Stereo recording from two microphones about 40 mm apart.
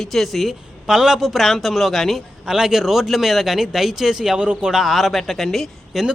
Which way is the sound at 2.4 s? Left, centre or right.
Centre.